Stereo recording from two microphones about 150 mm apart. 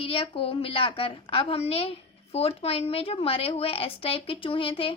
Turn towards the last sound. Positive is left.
turn(degrees=35)  # may be behind; listen again after turning